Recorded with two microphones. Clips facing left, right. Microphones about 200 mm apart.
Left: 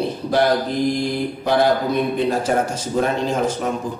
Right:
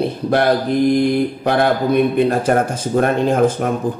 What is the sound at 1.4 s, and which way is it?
A man's voice, 60° right (ahead or behind).